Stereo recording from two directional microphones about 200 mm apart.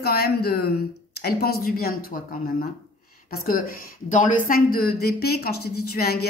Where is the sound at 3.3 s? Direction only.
45° left (ahead or behind).